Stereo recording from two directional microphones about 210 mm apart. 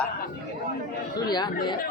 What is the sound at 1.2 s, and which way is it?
Speech, 20° left (ahead or behind).